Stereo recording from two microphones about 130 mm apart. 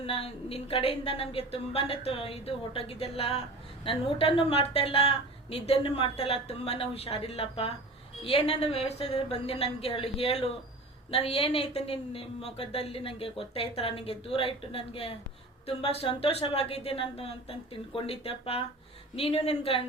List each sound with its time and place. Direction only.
0.0 s a woman's voice: 50° left (ahead or behind)